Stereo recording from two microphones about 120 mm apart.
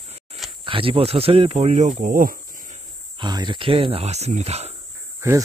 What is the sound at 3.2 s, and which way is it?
Speech, 35° right (ahead or behind).